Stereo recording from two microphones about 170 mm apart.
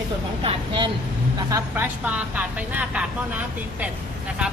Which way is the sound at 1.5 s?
15° right (ahead or behind).